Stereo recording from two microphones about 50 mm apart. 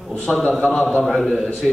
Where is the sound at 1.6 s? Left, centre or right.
Centre.